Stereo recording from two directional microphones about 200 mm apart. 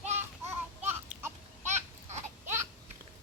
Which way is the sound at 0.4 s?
10° right (ahead or behind).